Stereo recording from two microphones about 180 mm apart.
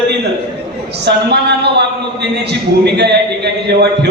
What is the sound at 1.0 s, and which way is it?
A man's voice, 70° right (ahead or behind).